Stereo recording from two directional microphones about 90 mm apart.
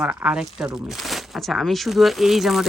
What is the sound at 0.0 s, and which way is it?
Speech, 10° right (ahead or behind).